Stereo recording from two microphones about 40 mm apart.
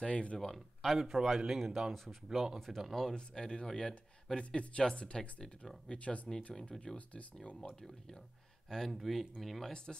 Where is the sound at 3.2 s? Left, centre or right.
Left.